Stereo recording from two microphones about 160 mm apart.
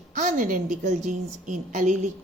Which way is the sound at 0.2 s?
55° right (ahead or behind).